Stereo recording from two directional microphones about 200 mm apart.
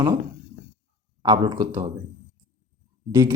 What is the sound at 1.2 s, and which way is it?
Speech, 20° right (ahead or behind).